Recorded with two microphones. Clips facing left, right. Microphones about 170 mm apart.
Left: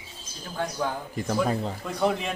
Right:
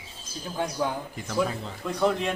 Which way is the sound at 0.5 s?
15° right (ahead or behind).